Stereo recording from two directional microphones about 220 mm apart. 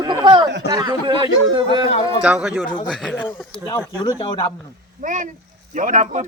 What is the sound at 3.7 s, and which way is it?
Speech, 15° left (ahead or behind).